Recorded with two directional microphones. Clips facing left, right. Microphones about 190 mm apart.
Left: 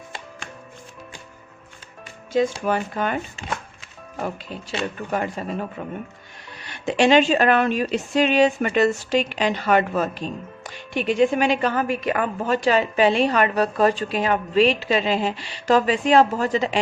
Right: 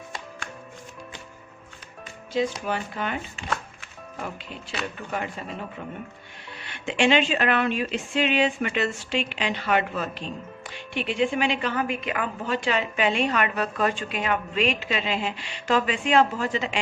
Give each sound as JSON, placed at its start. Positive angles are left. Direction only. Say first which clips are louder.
{"t": 2.3, "sound": "speech", "louder": "left 5 dB", "side_deg": 45}
{"t": 5.1, "sound": "speech", "louder": "left 6 dB", "side_deg": 45}
{"t": 6.6, "sound": "a woman's voice", "louder": "left 4 dB", "side_deg": 40}